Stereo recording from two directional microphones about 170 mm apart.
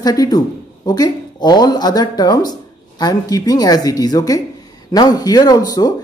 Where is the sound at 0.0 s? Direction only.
20° left (ahead or behind).